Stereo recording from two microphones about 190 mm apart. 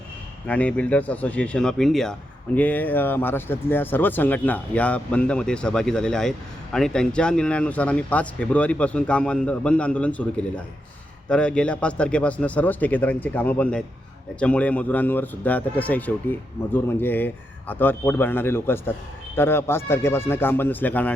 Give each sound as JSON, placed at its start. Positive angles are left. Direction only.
{"t": 0.4, "sound": "a man's voice", "side_deg": 5}